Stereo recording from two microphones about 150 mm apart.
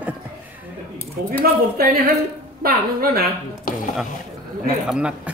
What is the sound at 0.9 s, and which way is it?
A woman's voice, 90° right.